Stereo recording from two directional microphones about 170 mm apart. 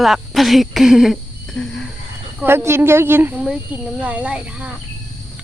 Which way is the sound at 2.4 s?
15° right (ahead or behind).